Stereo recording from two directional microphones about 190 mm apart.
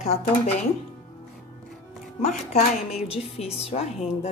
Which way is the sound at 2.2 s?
35° left (ahead or behind).